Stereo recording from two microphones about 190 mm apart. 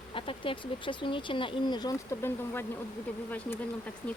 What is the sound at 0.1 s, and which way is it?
Speech, 25° left (ahead or behind).